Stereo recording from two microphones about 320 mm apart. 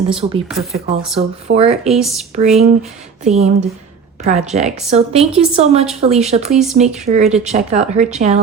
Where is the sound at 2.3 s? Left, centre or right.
Right.